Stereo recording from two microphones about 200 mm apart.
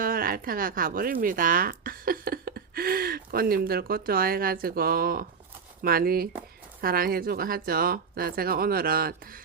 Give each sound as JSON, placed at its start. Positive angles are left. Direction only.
{"t": 0.0, "sound": "speech", "side_deg": -45}